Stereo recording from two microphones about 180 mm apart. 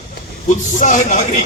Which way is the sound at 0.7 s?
45° left (ahead or behind).